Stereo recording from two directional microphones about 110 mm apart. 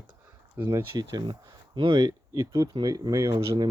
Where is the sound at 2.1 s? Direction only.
25° right (ahead or behind).